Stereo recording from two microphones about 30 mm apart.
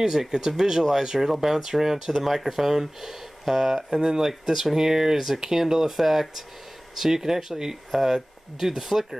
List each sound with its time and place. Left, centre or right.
0.0 s speech: centre
5.1 s speech: centre